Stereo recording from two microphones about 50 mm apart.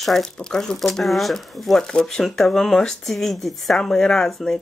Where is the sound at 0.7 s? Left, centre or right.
Centre.